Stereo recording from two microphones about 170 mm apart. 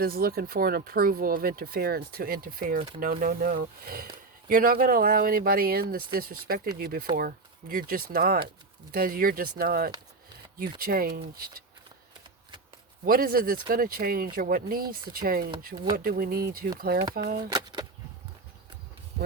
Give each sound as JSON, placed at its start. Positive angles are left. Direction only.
{"t": 0.0, "sound": "speech", "side_deg": -60}
{"t": 13.1, "sound": "speech", "side_deg": -60}
{"t": 17.5, "sound": "a sound", "side_deg": -20}